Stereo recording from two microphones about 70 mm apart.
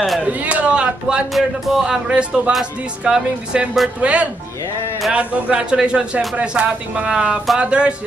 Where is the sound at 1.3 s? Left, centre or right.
Centre.